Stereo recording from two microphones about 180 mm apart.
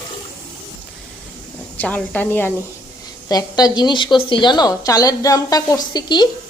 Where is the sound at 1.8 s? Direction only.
10° left (ahead or behind); by 6.3 s 25° left (ahead or behind).